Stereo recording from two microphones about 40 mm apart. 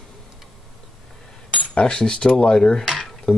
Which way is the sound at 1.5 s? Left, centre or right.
Left.